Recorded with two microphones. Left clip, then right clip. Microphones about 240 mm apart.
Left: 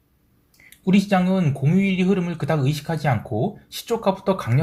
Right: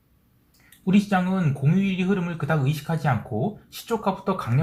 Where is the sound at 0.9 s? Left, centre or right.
Left.